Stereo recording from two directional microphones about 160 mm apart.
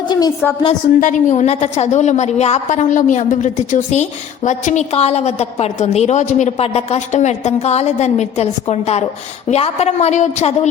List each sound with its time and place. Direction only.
0.7 s a woman's voice: 50° left (ahead or behind)